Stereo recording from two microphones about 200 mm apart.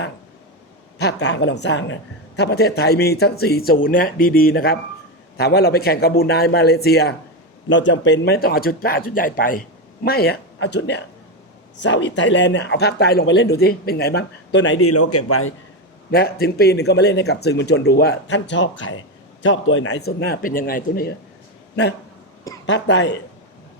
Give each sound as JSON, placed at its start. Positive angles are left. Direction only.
{"t": 0.9, "sound": "speech", "side_deg": 60}
{"t": 7.7, "sound": "speech", "side_deg": 65}
{"t": 15.3, "sound": "a man's voice", "side_deg": 90}
{"t": 16.1, "sound": "speech", "side_deg": 50}
{"t": 22.6, "sound": "speech", "side_deg": 65}